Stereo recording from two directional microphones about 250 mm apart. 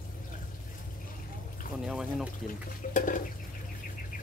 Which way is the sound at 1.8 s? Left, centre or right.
Centre.